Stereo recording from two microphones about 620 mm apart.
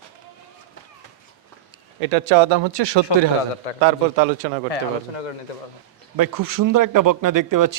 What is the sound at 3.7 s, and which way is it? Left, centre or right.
Speech, left.